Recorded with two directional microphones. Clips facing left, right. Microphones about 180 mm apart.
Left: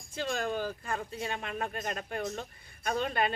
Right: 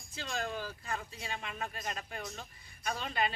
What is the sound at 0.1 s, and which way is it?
Speech, 50° left (ahead or behind).